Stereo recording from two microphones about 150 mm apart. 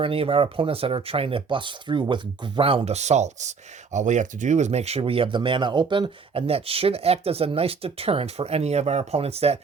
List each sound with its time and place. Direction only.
0.0 s speech: 40° right (ahead or behind)